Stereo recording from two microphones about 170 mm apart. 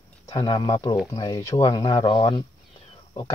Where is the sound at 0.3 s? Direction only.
25° left (ahead or behind).